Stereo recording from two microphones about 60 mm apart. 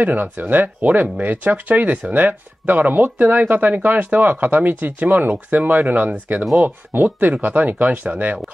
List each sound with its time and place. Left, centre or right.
0.0 s speech: right